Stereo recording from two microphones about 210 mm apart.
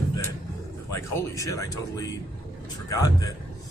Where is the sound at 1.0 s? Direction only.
15° left (ahead or behind).